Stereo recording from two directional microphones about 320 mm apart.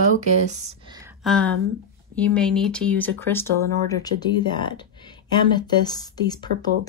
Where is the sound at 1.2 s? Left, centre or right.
Centre.